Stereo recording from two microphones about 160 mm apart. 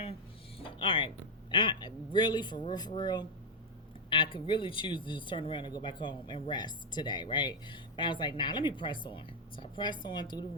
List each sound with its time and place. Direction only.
0.8 s speech: 30° left (ahead or behind)